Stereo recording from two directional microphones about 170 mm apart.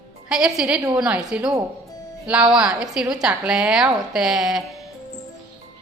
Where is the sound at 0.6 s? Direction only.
5° right (ahead or behind).